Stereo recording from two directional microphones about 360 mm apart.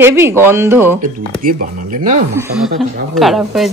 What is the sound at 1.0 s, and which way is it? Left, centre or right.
Speech, right.